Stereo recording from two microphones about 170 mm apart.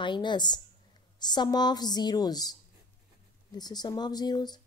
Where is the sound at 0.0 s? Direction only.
25° left (ahead or behind).